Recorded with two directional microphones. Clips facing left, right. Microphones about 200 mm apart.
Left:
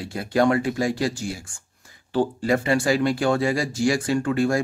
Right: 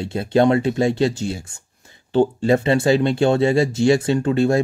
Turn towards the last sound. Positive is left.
turn(degrees=-25)  # may be behind; listen again after turning